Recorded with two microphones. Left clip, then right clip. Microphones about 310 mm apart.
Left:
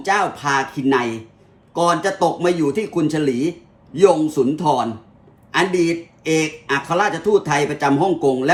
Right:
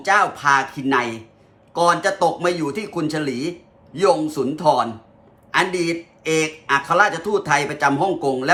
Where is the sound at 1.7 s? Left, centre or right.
Centre.